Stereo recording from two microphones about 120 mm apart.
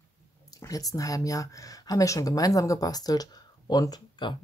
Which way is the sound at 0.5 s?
30° left (ahead or behind).